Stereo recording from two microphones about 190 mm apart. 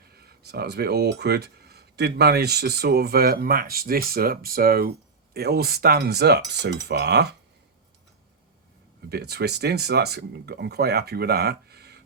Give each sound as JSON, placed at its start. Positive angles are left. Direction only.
{"t": 0.0, "sound": "speech", "side_deg": -55}
{"t": 9.0, "sound": "speech", "side_deg": -60}